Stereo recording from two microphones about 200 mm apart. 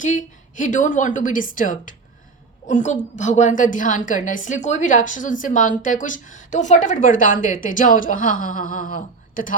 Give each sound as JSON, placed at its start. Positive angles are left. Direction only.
{"t": 0.0, "sound": "a woman's voice", "side_deg": 40}